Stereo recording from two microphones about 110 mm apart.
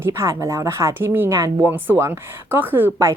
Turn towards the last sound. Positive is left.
turn(degrees=-20)  # may be behind; listen again after turning